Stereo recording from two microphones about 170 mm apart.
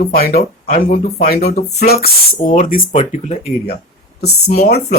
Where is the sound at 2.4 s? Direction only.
50° left (ahead or behind).